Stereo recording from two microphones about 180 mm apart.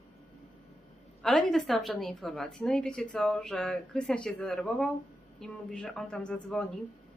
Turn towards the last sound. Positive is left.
turn(degrees=5)  # may be behind; listen again after turning